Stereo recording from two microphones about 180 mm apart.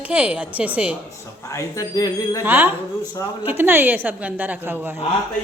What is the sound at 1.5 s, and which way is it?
Speech, 15° left (ahead or behind).